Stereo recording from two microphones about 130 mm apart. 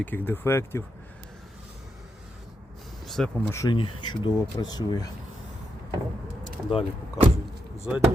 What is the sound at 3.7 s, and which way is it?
Speech, 40° left (ahead or behind).